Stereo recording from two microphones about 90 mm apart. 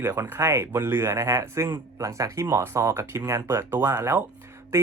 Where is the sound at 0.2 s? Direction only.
30° right (ahead or behind).